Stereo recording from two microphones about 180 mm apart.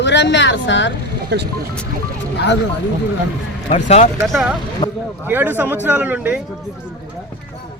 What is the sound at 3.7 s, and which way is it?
Speech, 40° left (ahead or behind).